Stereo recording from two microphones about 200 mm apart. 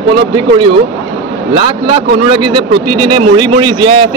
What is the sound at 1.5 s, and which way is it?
Speech, 25° right (ahead or behind).